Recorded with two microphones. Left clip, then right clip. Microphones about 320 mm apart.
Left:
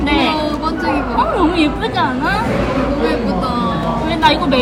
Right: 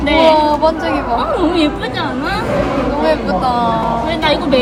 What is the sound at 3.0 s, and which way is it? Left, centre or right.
Speech, centre.